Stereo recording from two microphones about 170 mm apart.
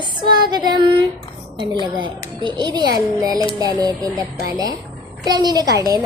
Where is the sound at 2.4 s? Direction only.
25° right (ahead or behind).